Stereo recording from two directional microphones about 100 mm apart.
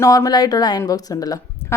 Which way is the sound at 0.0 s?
35° left (ahead or behind).